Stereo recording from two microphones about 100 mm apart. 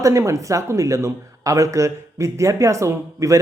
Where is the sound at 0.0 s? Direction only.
30° right (ahead or behind).